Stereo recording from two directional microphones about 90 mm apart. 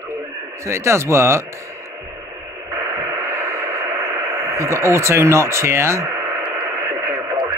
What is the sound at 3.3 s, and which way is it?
Radio, 30° right (ahead or behind).